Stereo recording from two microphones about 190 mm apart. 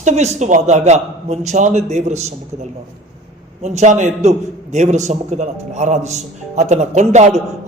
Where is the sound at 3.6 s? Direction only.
35° right (ahead or behind).